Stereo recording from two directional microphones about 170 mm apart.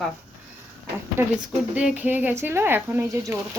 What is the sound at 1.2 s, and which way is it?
Speech, 15° right (ahead or behind).